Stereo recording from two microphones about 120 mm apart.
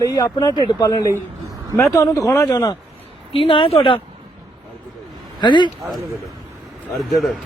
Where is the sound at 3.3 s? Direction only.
50° left (ahead or behind).